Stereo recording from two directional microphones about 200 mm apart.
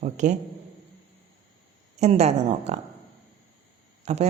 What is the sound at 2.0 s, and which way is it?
Speech, 35° right (ahead or behind).